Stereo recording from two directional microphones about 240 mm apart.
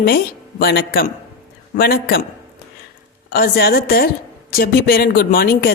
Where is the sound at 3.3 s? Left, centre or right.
Left.